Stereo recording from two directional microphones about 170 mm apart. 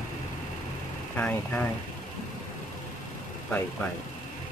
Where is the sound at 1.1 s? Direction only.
10° left (ahead or behind).